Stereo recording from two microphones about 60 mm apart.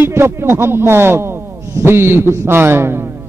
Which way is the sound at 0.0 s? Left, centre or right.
Right.